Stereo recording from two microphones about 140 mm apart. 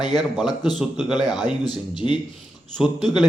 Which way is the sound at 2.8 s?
Centre (ahead or behind).